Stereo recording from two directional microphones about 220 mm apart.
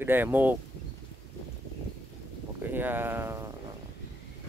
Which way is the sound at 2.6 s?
10° right (ahead or behind).